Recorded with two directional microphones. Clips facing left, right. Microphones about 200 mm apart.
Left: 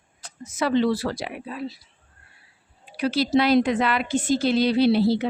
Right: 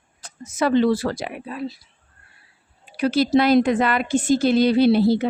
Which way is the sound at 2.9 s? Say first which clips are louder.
Right 3 dB; 50° right (ahead or behind).